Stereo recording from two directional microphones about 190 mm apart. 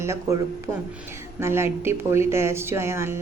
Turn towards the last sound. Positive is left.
turn(degrees=-15)  # may be behind; listen again after turning